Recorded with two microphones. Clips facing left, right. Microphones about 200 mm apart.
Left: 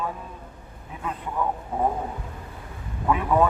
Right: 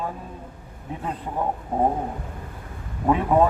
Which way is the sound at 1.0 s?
30° right (ahead or behind).